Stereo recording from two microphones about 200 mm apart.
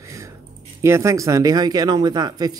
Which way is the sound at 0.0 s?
15° right (ahead or behind).